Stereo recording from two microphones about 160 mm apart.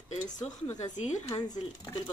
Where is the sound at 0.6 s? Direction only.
25° left (ahead or behind).